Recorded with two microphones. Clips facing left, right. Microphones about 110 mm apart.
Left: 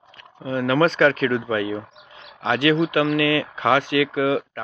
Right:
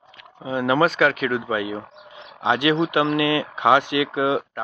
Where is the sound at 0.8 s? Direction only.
5° right (ahead or behind).